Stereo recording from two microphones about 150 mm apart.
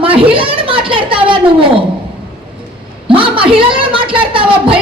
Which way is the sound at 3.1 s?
35° right (ahead or behind).